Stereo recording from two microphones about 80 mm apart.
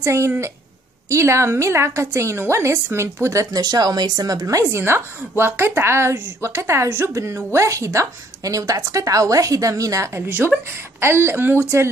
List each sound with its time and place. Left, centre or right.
0.0 s a woman's voice: right
3.5 s a woman's voice: right
10.2 s speech: right